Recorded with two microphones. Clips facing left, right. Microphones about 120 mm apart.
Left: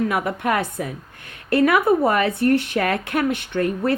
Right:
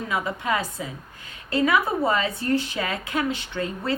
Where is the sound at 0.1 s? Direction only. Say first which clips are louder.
Left 4 dB; 65° left (ahead or behind).